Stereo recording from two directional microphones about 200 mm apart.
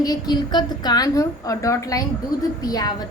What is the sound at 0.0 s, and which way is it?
A woman's voice, 20° left (ahead or behind).